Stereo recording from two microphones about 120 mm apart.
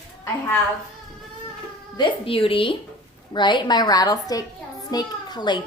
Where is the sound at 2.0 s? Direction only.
45° left (ahead or behind).